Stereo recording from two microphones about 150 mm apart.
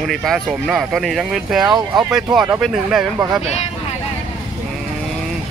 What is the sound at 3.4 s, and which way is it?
Speech, 45° left (ahead or behind).